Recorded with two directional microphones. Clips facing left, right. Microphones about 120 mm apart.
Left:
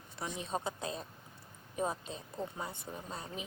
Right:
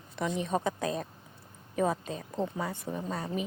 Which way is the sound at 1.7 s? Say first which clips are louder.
Right 7 dB; 75° right (ahead or behind).